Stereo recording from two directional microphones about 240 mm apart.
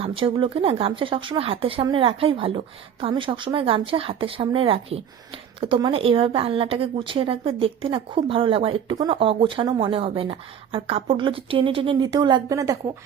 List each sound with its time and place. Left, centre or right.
0.0 s a woman's voice: right